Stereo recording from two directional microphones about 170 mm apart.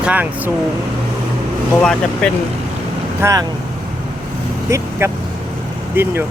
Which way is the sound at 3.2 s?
15° right (ahead or behind).